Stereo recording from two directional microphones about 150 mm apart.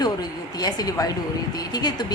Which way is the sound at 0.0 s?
25° left (ahead or behind).